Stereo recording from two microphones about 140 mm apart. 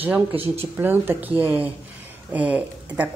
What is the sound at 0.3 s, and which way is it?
Speech, 45° right (ahead or behind).